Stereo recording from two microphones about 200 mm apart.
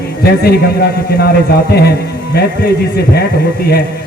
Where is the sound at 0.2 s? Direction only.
50° left (ahead or behind).